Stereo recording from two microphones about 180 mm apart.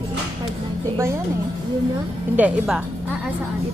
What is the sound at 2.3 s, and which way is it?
Speech, 5° right (ahead or behind).